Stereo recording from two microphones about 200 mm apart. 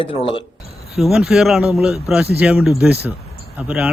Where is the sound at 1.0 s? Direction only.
Centre (ahead or behind).